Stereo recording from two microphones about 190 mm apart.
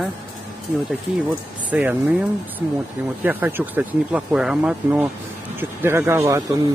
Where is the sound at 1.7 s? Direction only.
5° right (ahead or behind).